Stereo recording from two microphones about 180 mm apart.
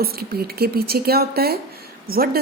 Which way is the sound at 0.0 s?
55° right (ahead or behind).